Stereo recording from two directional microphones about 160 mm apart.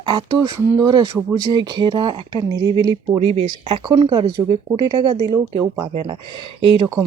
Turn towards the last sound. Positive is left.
turn(degrees=-35)  # may be behind; listen again after turning